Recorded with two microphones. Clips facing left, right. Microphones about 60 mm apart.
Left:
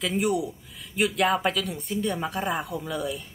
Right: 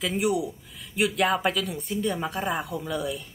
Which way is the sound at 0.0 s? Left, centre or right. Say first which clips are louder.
Even; centre.